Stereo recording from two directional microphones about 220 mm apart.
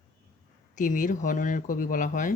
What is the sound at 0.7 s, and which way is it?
Speech, 35° left (ahead or behind).